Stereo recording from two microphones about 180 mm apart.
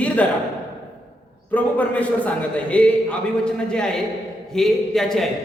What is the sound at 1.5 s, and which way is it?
A man's voice, 10° left (ahead or behind).